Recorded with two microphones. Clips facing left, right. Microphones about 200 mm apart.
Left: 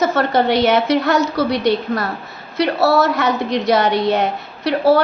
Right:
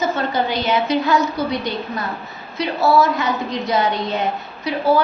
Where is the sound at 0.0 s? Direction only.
85° left.